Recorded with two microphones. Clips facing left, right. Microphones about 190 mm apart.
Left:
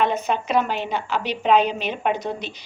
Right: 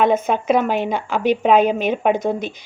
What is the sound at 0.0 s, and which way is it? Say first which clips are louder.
A woman's voice: right 5 dB; 50° right (ahead or behind).